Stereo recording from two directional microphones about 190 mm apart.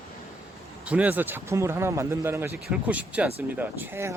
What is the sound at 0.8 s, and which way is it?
Speech, 5° right (ahead or behind).